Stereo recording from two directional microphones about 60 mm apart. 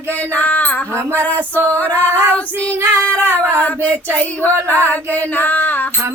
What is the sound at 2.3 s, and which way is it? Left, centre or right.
Female singing, left.